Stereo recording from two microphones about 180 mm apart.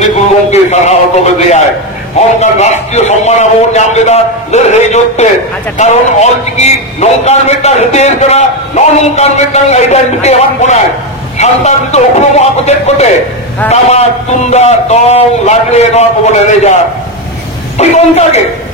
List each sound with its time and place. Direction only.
0.0 s a sound: 40° left (ahead or behind)
2.4 s a man's voice: 40° left (ahead or behind)
17.7 s a man's voice: 35° left (ahead or behind)